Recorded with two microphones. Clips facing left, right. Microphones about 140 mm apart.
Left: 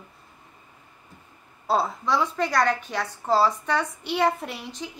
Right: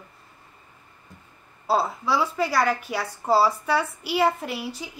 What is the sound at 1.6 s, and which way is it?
A woman's voice, 5° right (ahead or behind).